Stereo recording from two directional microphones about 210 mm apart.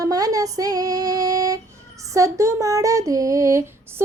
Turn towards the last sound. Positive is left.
turn(degrees=-15)  # may be behind; listen again after turning